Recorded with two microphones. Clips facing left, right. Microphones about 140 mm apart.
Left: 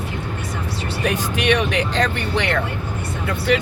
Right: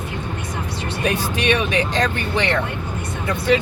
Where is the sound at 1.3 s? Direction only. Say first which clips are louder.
Left 2 dB; 70° left (ahead or behind).